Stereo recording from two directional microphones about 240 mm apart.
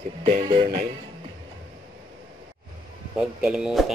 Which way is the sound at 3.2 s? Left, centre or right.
Centre.